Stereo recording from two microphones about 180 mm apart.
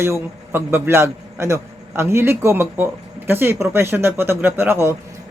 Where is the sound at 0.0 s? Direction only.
15° right (ahead or behind).